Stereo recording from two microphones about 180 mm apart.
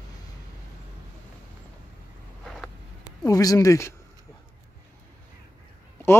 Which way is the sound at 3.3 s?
20° left (ahead or behind).